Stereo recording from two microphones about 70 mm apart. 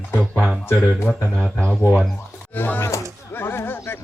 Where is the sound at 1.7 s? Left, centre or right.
Right.